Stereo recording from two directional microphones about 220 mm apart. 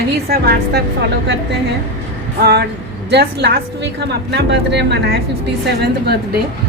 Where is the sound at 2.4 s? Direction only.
50° right (ahead or behind).